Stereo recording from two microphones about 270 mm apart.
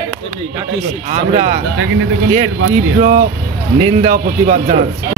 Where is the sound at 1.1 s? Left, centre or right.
Right.